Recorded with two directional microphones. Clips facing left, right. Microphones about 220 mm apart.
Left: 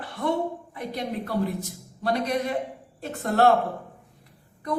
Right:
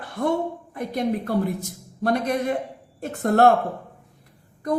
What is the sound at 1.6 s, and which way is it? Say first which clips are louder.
A woman's voice: right 4 dB; 50° right (ahead or behind).